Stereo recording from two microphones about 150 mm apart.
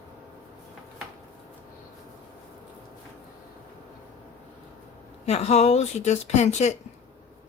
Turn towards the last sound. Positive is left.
turn(degrees=50)  # may be behind; listen again after turning